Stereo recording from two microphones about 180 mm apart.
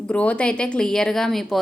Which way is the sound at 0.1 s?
5° left (ahead or behind).